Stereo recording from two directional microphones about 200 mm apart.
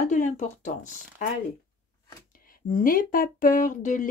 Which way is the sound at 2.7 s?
45° left (ahead or behind).